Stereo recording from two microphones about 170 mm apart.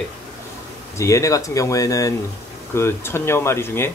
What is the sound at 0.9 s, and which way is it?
Speech, 20° left (ahead or behind).